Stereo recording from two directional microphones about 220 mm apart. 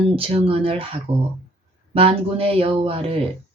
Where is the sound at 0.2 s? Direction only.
25° right (ahead or behind).